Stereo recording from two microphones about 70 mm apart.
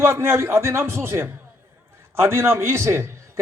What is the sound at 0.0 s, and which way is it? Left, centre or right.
A man's voice, right.